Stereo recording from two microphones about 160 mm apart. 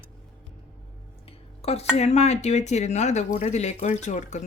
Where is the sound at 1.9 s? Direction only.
45° left (ahead or behind).